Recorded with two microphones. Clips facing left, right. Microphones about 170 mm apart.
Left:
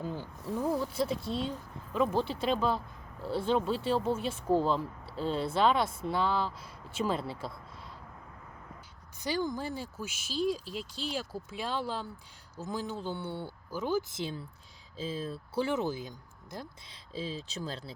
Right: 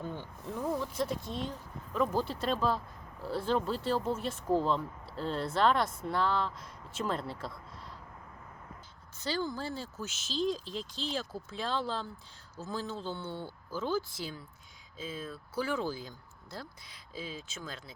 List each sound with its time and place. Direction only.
0.0 s speech: 5° left (ahead or behind)
1.2 s speech: 30° left (ahead or behind)
2.1 s speech: centre (ahead or behind)
9.2 s speech: 15° left (ahead or behind)
17.2 s speech: 30° left (ahead or behind)